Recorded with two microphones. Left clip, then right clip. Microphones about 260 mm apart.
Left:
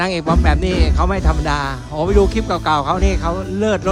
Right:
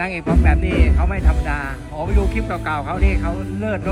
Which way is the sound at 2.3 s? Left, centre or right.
Left.